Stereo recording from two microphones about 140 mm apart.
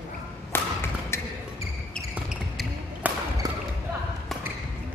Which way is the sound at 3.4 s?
25° right (ahead or behind).